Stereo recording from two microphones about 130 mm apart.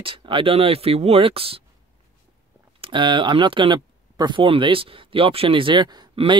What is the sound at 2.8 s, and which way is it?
Speech, 40° right (ahead or behind).